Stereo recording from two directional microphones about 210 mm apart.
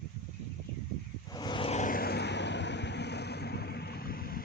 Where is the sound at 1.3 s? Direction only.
20° left (ahead or behind); by 4.4 s 45° left (ahead or behind).